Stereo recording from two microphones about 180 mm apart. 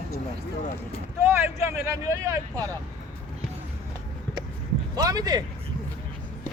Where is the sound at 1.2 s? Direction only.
15° right (ahead or behind).